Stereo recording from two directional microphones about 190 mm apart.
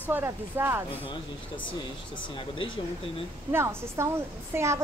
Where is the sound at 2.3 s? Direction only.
25° left (ahead or behind).